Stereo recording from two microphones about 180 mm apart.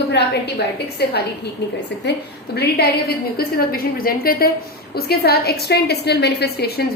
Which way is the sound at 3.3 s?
55° left (ahead or behind).